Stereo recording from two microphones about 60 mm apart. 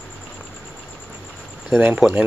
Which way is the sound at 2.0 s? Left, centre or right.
Centre.